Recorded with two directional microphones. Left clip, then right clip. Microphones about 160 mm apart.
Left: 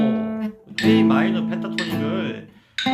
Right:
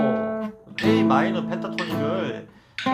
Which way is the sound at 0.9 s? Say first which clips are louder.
Left 1 dB; centre (ahead or behind).